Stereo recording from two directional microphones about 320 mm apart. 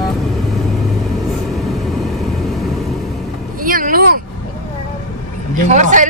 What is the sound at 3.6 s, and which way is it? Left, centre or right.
Vehicle, right.